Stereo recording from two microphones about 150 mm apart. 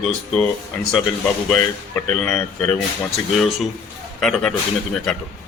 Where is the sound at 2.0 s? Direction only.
5° left (ahead or behind).